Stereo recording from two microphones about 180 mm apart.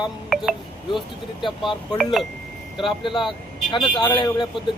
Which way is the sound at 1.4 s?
25° left (ahead or behind).